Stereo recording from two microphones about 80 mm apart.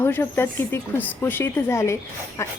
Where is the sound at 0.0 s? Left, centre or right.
Left.